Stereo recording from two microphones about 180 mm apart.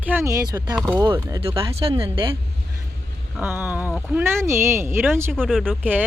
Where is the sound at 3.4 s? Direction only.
10° right (ahead or behind).